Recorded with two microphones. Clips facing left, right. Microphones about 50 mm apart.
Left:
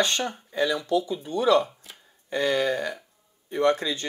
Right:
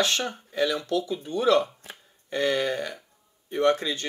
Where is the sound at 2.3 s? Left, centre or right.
Right.